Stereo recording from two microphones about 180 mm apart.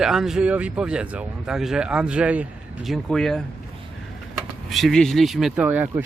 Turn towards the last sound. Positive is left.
turn(degrees=-10)  # may be behind; listen again after turning